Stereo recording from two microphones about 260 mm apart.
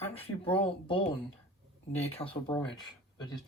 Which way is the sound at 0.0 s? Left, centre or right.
Left.